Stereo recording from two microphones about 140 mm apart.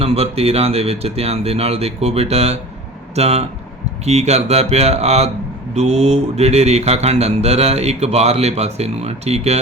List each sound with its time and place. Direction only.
0.0 s speech: 45° right (ahead or behind)